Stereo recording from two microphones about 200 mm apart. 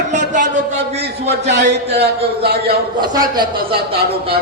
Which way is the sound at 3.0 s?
20° right (ahead or behind).